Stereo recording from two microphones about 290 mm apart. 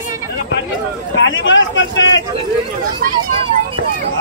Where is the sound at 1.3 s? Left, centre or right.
Left.